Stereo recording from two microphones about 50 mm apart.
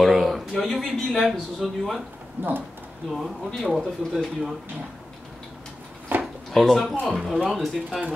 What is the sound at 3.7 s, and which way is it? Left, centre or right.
Speech, centre.